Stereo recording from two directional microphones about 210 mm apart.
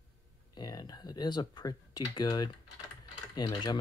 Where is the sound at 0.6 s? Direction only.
20° left (ahead or behind).